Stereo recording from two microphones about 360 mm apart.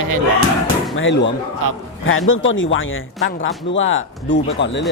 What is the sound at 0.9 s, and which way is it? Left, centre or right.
Speech, left.